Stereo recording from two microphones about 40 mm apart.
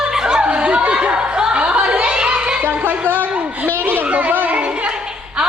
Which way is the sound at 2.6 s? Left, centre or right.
Right.